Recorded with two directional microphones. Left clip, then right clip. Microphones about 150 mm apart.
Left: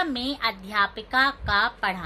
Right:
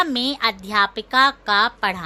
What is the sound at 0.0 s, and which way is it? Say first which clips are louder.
A woman's voice: right 6 dB; 90° right.